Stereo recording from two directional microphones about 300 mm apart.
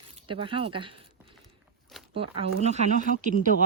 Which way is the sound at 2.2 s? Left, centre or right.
Right.